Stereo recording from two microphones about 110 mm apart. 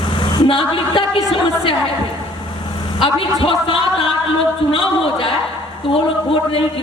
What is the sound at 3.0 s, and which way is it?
Speech, 55° left (ahead or behind).